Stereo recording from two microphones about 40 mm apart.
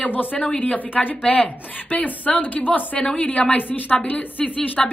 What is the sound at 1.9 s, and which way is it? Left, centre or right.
A woman's voice, left.